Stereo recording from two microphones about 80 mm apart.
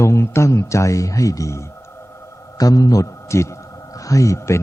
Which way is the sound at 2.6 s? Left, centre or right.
Left.